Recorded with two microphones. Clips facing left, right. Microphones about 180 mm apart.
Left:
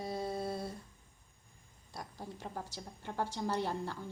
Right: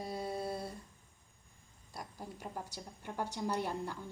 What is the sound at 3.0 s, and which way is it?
Speech, 20° right (ahead or behind).